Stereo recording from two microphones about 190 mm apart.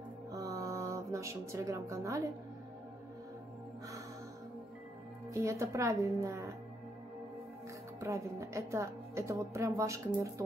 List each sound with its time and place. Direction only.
0.3 s music: 20° right (ahead or behind)
5.3 s a woman's voice: 15° right (ahead or behind)
8.0 s a woman's voice: 15° right (ahead or behind)